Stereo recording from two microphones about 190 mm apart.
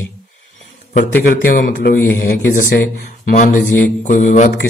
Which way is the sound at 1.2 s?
45° left (ahead or behind).